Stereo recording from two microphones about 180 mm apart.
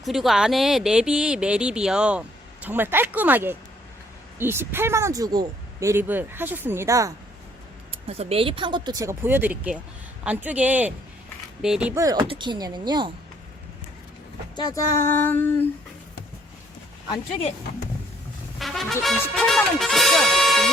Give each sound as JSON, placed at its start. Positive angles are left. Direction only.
{"t": 0.0, "sound": "speech", "side_deg": 0}
{"t": 8.0, "sound": "speech", "side_deg": -35}
{"t": 11.9, "sound": "speech", "side_deg": -20}
{"t": 14.5, "sound": "a sound", "side_deg": 20}
{"t": 17.1, "sound": "speech", "side_deg": 35}
{"t": 18.6, "sound": "speech", "side_deg": 0}